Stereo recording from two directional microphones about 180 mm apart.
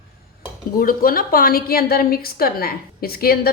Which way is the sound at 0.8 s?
50° left (ahead or behind).